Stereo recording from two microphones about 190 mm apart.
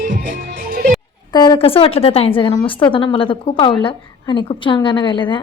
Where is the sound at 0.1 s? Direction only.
45° right (ahead or behind).